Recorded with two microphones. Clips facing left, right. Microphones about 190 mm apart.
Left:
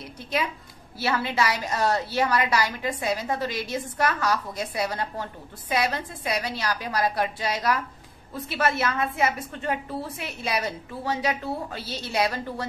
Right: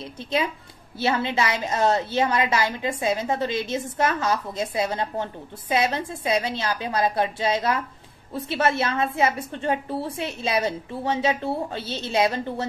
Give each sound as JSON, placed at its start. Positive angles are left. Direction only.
{"t": 0.0, "sound": "a woman's voice", "side_deg": -25}